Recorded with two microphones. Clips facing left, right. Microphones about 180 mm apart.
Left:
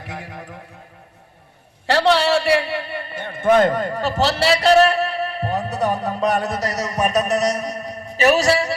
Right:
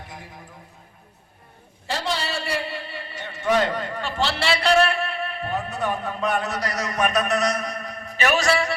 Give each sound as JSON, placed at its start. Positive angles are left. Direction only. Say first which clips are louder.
{"t": 0.0, "sound": "a man's voice", "louder": "left 7 dB", "side_deg": 75}
{"t": 1.9, "sound": "a man's voice", "louder": "left 11 dB", "side_deg": 70}